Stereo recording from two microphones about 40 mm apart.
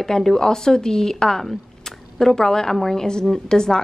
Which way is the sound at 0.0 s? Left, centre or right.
Centre.